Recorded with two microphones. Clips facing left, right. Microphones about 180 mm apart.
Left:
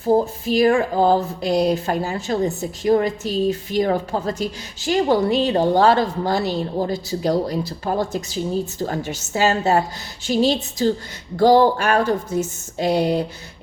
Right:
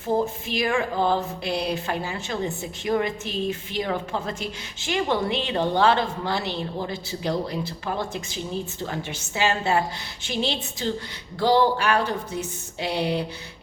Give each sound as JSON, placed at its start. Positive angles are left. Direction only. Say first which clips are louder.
{"t": 0.0, "sound": "speech", "louder": "left 6 dB", "side_deg": 40}